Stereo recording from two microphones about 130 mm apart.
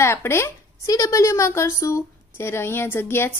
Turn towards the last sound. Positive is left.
turn(degrees=20)  # may be behind; listen again after turning